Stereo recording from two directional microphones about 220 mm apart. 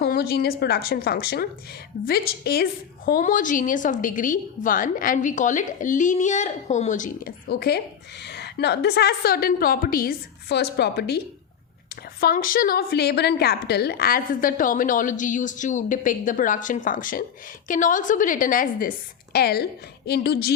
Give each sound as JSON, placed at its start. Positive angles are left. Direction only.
{"t": 0.0, "sound": "a woman's voice", "side_deg": 45}
{"t": 12.2, "sound": "a woman's voice", "side_deg": 40}